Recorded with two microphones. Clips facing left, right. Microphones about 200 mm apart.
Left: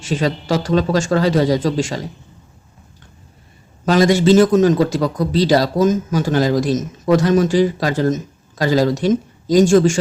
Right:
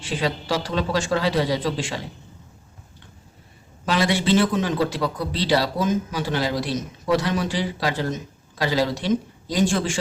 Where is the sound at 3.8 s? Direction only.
45° left (ahead or behind).